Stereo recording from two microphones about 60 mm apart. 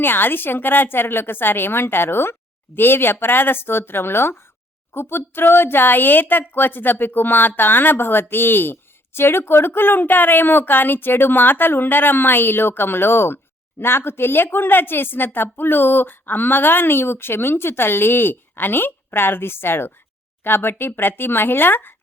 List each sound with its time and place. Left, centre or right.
0.0 s a woman's voice: left